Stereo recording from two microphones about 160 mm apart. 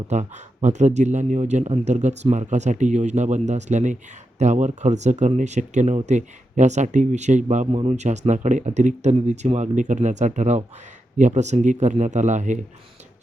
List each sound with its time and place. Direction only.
0.1 s speech: 45° right (ahead or behind)